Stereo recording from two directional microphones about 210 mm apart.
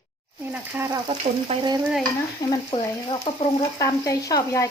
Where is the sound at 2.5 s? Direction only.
15° left (ahead or behind).